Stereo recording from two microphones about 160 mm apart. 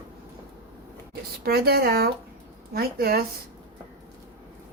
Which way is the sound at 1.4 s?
75° right (ahead or behind).